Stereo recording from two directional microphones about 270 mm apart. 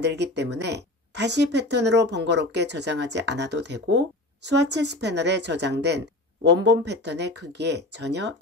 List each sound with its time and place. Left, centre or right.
0.0 s speech: right